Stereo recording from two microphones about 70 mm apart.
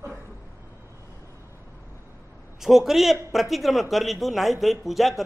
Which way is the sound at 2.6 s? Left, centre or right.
Centre.